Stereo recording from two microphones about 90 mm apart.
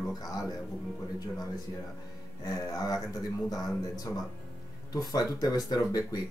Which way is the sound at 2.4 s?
45° left (ahead or behind).